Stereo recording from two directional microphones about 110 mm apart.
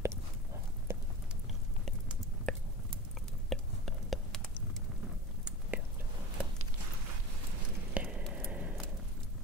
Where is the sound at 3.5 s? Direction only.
Centre (ahead or behind).